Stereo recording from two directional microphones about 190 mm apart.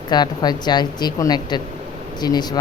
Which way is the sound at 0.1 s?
20° left (ahead or behind).